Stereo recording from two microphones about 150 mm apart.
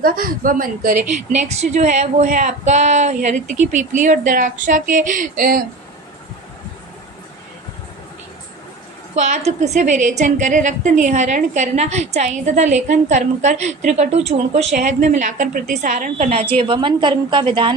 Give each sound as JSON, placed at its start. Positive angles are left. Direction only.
{"t": 0.0, "sound": "a woman's voice", "side_deg": -70}
{"t": 1.3, "sound": "speech", "side_deg": -50}
{"t": 9.1, "sound": "a woman's voice", "side_deg": -50}